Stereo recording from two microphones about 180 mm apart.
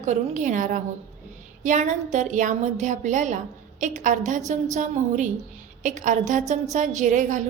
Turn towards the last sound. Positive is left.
turn(degrees=-45)  # may be behind; listen again after turning